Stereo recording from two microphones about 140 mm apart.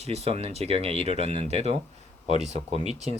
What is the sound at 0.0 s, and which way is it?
Speech, 50° right (ahead or behind).